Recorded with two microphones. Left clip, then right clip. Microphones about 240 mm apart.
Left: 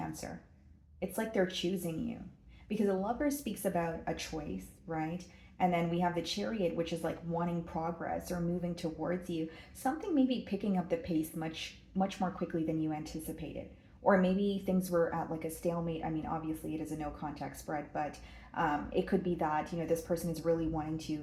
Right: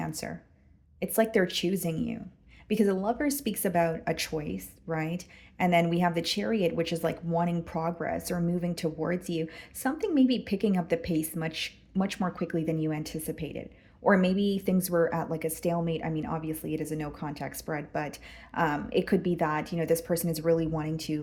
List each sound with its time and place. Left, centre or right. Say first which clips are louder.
0.2 s speech: right 7 dB; right